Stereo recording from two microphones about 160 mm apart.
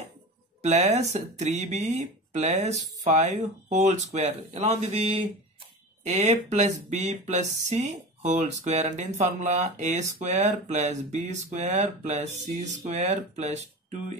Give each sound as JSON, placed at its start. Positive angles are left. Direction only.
{"t": 0.6, "sound": "speech", "side_deg": -45}